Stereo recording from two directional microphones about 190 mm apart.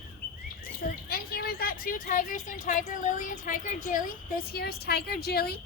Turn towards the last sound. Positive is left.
turn(degrees=55)  # may be behind; listen again after turning